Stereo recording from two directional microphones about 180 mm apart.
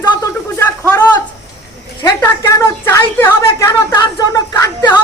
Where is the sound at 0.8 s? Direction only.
10° left (ahead or behind).